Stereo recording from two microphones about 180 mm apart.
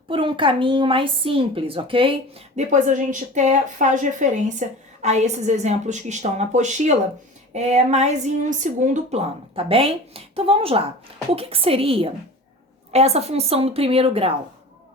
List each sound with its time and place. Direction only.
0.1 s a woman's voice: 30° right (ahead or behind)